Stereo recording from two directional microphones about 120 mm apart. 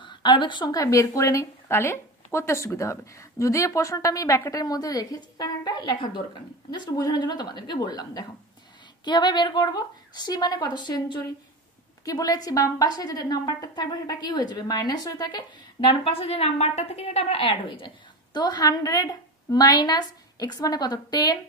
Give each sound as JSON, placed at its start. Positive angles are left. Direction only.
{"t": 0.0, "sound": "a woman's voice", "side_deg": 40}